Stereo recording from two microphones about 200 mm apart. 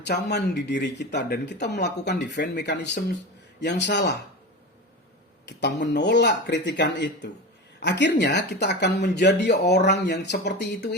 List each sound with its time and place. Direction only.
0.0 s speech: 55° left (ahead or behind)
5.5 s speech: 60° left (ahead or behind)